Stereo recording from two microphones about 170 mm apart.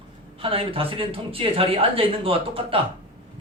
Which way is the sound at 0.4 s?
35° right (ahead or behind).